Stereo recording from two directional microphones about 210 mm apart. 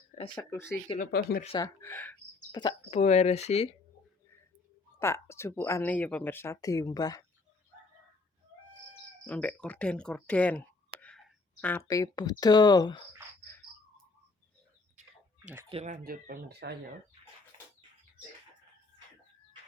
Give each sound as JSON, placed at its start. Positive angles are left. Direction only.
{"t": 0.2, "sound": "speech", "side_deg": 15}
{"t": 0.9, "sound": "speech", "side_deg": 40}
{"t": 1.5, "sound": "speech", "side_deg": 20}
{"t": 2.9, "sound": "speech", "side_deg": 30}
{"t": 4.9, "sound": "speech", "side_deg": 15}
{"t": 9.2, "sound": "speech", "side_deg": 5}
{"t": 13.5, "sound": "cricket", "side_deg": 10}
{"t": 15.7, "sound": "speech", "side_deg": -35}
{"t": 17.5, "sound": "bird", "side_deg": -25}